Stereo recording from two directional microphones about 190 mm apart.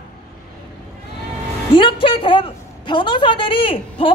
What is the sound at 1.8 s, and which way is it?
A woman's voice, 25° left (ahead or behind).